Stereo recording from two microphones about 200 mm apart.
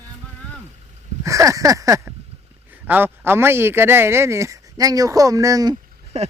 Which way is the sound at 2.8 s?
10° right (ahead or behind).